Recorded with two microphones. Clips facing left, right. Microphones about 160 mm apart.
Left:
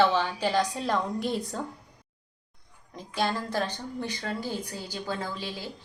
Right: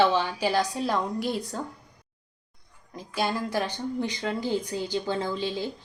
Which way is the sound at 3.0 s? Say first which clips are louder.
Right 1 dB; 5° right (ahead or behind).